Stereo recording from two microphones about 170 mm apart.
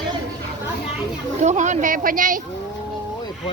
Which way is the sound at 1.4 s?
45° right (ahead or behind).